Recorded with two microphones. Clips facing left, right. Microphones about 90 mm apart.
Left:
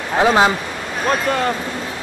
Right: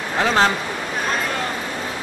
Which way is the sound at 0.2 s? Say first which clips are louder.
Left 4 dB; 15° left (ahead or behind).